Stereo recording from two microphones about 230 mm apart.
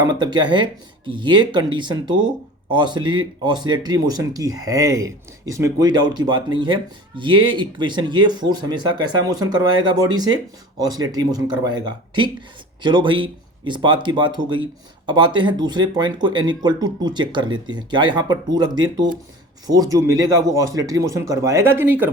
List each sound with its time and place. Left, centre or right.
0.0 s speech: centre